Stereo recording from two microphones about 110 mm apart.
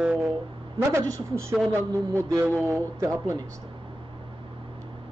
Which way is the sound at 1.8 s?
35° right (ahead or behind).